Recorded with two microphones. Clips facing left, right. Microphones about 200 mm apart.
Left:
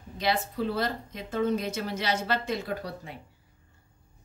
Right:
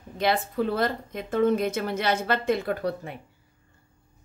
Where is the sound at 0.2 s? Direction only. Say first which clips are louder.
Right 4 dB; 55° right (ahead or behind).